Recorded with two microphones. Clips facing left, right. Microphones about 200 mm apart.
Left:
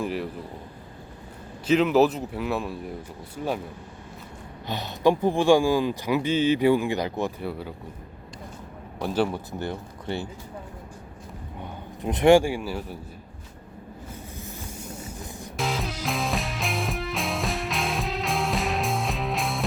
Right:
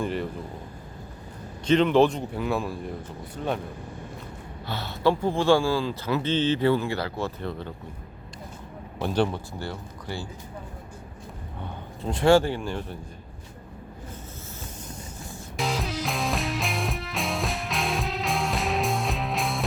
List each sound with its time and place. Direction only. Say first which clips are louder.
0.0 s a man's voice: even; 5° left (ahead or behind)
1.6 s a man's voice: even; 5° left (ahead or behind)
4.6 s speech: left 2 dB; 20° left (ahead or behind)
9.0 s speech: even; 5° left (ahead or behind)
9.5 s speech: left 3 dB; 20° left (ahead or behind)
12.0 s speech: left 2 dB; 15° left (ahead or behind)
15.5 s music: right 1 dB; centre (ahead or behind)